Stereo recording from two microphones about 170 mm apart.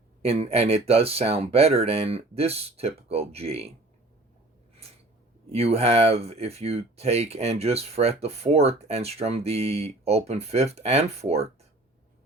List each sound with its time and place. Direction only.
0.2 s speech: 35° right (ahead or behind)
5.5 s speech: 35° right (ahead or behind)